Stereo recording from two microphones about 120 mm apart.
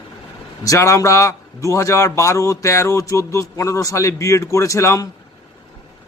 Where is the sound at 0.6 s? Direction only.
25° left (ahead or behind).